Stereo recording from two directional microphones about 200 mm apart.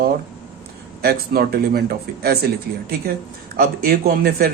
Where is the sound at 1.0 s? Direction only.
50° right (ahead or behind).